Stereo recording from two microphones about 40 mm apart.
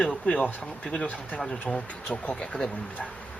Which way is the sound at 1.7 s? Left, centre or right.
Centre.